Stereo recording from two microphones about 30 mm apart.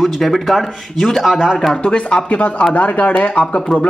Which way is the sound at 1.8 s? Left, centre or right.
Left.